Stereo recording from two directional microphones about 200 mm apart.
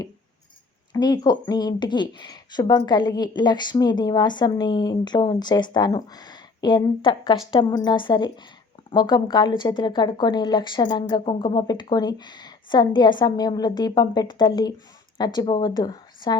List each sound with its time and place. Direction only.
0.9 s speech: 20° left (ahead or behind)